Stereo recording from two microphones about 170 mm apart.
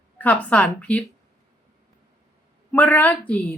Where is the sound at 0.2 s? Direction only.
10° left (ahead or behind).